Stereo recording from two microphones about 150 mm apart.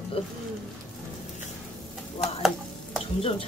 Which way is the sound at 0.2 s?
35° left (ahead or behind).